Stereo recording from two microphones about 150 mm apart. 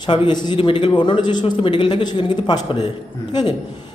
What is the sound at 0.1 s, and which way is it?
A man's voice, 30° left (ahead or behind).